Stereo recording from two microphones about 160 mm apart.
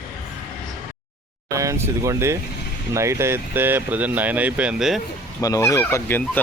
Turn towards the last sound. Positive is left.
turn(degrees=15)  # may be behind; listen again after turning